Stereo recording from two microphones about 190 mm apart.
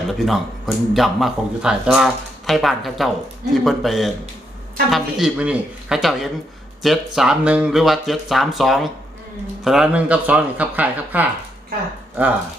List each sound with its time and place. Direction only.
0.2 s speech: centre (ahead or behind)